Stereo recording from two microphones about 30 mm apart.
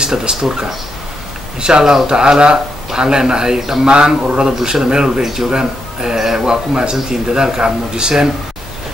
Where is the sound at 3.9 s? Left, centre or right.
Right; by 5.5 s centre.